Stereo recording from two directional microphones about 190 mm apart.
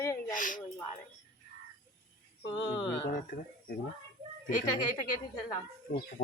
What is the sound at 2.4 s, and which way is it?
Speech, 25° left (ahead or behind).